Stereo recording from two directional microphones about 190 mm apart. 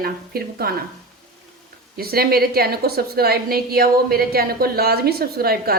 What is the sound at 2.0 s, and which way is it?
A woman's voice, 55° right (ahead or behind).